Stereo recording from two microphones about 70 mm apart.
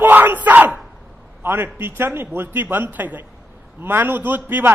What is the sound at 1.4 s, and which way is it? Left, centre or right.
A man's voice, right.